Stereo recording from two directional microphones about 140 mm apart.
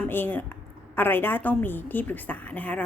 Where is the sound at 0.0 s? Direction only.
15° left (ahead or behind).